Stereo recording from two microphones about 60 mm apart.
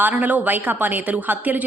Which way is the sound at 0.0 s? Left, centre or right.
Right.